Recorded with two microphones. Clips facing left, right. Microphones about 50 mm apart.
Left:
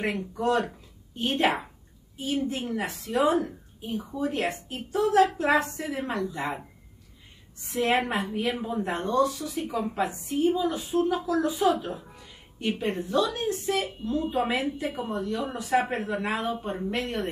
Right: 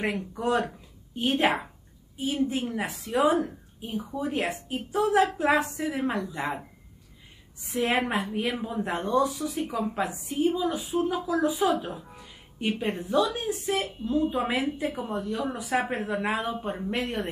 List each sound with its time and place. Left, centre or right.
0.3 s a woman's voice: centre
7.8 s a woman's voice: centre